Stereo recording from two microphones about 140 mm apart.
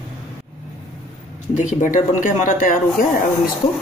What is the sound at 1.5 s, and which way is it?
Speech, 65° left (ahead or behind).